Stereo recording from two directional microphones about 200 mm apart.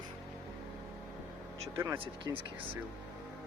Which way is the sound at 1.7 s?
15° right (ahead or behind).